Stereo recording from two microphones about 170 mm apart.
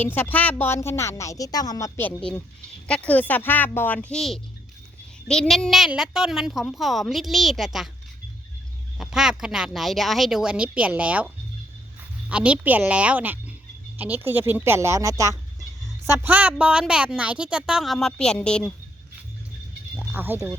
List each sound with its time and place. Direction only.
0.0 s a woman's voice: 10° left (ahead or behind)
9.0 s a woman's voice: 5° right (ahead or behind)
12.3 s a woman's voice: 5° right (ahead or behind)
20.1 s a woman's voice: 10° right (ahead or behind)